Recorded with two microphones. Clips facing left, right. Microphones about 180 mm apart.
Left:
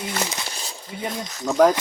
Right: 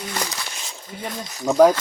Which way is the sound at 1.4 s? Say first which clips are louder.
Right 3 dB; 10° right (ahead or behind).